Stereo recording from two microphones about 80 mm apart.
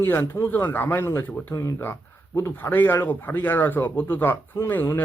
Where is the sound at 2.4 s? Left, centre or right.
Left.